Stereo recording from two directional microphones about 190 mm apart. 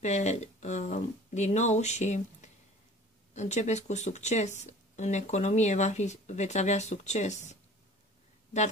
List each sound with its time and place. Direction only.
0.0 s speech: 35° left (ahead or behind)